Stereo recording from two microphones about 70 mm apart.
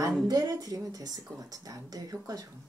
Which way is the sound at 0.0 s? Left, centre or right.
Right.